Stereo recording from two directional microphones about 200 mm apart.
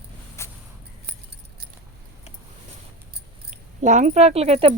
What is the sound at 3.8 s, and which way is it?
Speech, 35° right (ahead or behind).